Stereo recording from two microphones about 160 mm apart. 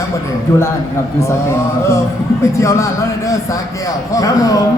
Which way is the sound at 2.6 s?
20° left (ahead or behind).